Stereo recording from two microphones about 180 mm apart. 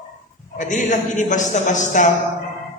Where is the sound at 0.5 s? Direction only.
45° left (ahead or behind).